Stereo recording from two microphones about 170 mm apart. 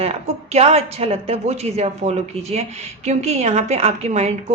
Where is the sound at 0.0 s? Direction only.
35° right (ahead or behind).